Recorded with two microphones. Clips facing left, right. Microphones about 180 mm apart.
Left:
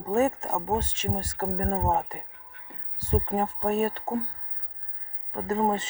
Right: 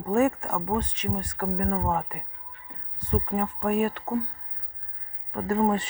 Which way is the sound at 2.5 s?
70° left (ahead or behind).